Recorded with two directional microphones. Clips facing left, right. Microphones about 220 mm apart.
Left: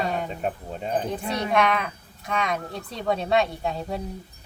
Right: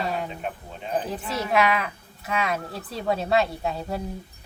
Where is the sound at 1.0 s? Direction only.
5° right (ahead or behind).